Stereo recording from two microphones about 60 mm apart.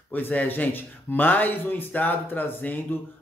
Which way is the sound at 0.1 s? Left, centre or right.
Left.